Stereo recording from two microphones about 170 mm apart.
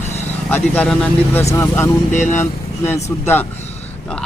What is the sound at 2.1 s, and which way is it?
Speech, 45° left (ahead or behind).